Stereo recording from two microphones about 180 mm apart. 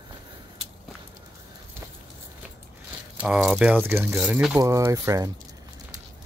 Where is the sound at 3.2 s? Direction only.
5° right (ahead or behind).